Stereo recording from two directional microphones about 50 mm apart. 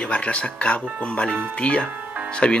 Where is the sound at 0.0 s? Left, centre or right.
Left.